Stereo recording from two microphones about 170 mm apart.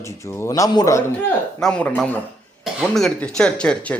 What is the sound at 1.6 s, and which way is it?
A man's voice, 5° left (ahead or behind).